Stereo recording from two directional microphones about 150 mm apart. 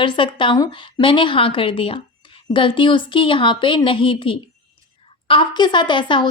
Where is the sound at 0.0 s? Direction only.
35° left (ahead or behind).